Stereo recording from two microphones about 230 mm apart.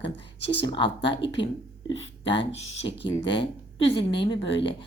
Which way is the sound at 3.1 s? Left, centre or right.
Centre.